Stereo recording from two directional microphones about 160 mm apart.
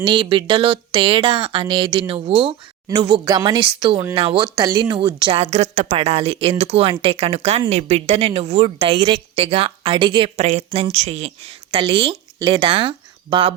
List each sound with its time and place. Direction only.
0.0 s speech: 30° right (ahead or behind)